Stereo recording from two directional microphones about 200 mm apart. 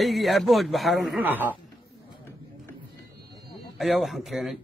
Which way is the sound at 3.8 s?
Centre (ahead or behind).